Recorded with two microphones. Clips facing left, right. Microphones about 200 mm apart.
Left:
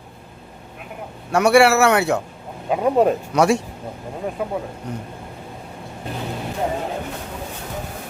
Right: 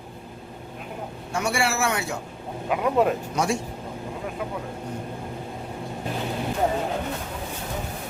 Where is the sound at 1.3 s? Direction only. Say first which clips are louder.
Left 12 dB; 70° left (ahead or behind).